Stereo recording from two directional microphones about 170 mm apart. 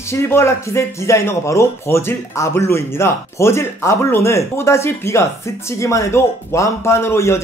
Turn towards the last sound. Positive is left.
turn(degrees=15)  # may be behind; listen again after turning